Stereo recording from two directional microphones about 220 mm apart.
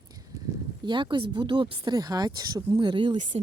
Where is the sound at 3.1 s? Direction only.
35° right (ahead or behind).